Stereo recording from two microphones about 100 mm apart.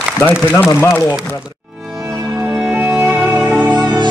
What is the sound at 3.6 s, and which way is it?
Music, 45° right (ahead or behind).